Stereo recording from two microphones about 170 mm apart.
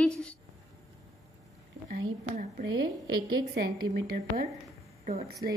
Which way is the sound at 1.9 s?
70° right (ahead or behind).